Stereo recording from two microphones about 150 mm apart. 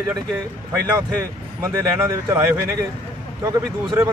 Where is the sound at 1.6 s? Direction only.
20° right (ahead or behind).